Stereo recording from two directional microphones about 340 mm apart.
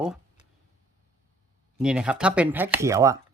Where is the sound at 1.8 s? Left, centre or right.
Centre.